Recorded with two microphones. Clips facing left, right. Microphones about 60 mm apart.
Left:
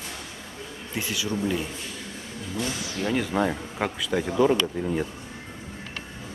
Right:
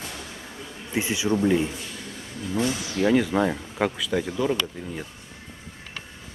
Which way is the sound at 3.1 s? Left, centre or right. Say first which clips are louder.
Right 3 dB; centre.